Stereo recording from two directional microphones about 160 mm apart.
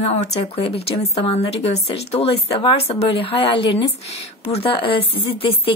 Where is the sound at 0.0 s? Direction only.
40° left (ahead or behind).